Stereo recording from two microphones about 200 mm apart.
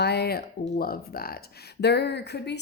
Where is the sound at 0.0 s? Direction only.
55° left (ahead or behind).